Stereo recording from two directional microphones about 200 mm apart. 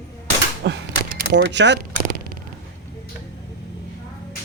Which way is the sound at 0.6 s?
60° right (ahead or behind).